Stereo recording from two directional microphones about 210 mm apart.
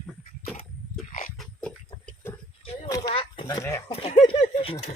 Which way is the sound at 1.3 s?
Centre (ahead or behind).